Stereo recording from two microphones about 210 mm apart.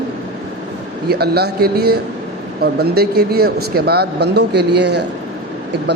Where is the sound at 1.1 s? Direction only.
50° right (ahead or behind).